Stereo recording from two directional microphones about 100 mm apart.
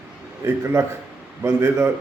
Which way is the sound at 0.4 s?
25° right (ahead or behind).